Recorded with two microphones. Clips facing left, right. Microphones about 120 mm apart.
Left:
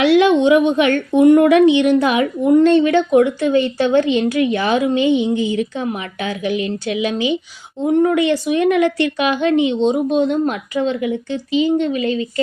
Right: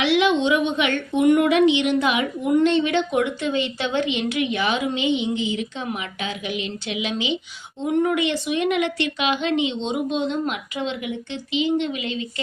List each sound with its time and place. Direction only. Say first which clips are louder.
0.0 s a sound: left 7 dB; 50° left (ahead or behind)
0.4 s speech: left 8 dB; 40° left (ahead or behind)
1.6 s a woman's voice: left 6 dB; 20° right (ahead or behind)
2.0 s speech: left 6 dB; 35° left (ahead or behind)
4.0 s a woman's voice: left 7 dB; 20° right (ahead or behind)
4.3 s speech: left 6 dB; 40° left (ahead or behind)
4.9 s a woman's voice: left 7 dB; 20° right (ahead or behind)
5.7 s speech: left 6 dB; 40° left (ahead or behind)
9.2 s a woman's voice: left 6 dB; 20° right (ahead or behind)
9.8 s speech: left 8 dB; 45° left (ahead or behind)